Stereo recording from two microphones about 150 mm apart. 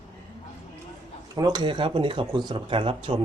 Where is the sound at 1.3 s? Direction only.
30° right (ahead or behind).